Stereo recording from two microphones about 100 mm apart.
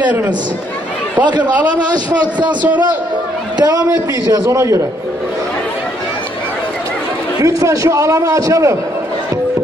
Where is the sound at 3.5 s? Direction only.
35° right (ahead or behind).